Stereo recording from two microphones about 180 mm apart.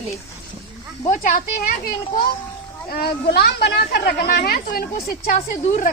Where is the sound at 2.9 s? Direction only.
60° left (ahead or behind).